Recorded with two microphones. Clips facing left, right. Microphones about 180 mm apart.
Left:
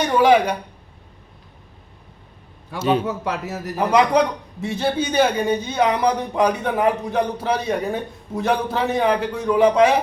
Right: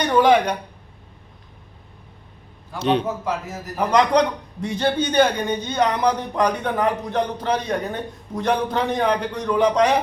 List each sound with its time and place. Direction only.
0.0 s a man's voice: 5° left (ahead or behind)
2.7 s a man's voice: 5° left (ahead or behind)
3.2 s speech: 70° left (ahead or behind)
3.8 s a man's voice: 5° left (ahead or behind)